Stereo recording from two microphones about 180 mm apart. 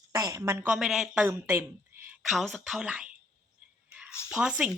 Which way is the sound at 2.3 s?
Centre (ahead or behind).